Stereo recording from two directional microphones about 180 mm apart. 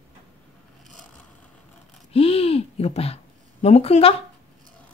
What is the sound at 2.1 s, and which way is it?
A woman's voice, 35° left (ahead or behind).